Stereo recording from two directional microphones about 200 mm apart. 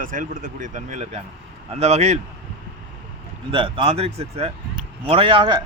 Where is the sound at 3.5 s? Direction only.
25° right (ahead or behind).